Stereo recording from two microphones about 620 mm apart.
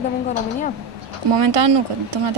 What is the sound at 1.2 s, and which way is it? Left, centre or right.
Speech, right.